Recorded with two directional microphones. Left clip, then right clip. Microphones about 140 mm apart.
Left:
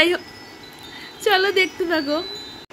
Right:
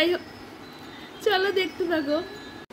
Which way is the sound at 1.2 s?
15° left (ahead or behind).